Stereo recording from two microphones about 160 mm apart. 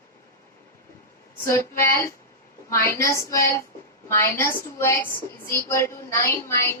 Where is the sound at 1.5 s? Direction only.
15° left (ahead or behind).